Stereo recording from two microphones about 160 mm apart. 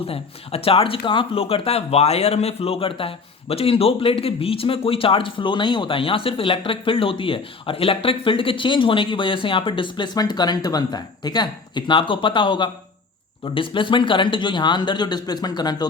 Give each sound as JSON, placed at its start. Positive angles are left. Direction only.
{"t": 0.0, "sound": "speech", "side_deg": 35}